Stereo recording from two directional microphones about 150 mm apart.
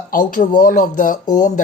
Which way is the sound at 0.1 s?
65° left (ahead or behind).